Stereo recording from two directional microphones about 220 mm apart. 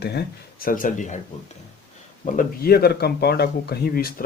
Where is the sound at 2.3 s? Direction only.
40° left (ahead or behind).